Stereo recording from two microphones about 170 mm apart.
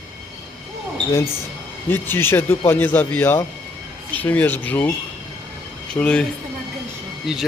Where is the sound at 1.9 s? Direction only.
15° left (ahead or behind).